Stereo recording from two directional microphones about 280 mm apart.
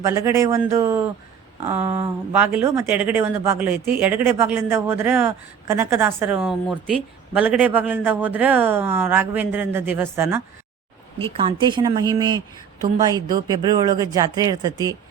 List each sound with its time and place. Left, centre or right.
0.0 s speech: centre
11.2 s speech: centre